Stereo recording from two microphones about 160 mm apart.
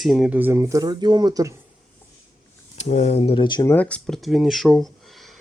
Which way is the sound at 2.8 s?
45° left (ahead or behind).